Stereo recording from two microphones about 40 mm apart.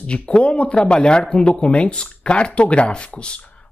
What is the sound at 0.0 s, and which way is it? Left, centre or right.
Speech, left.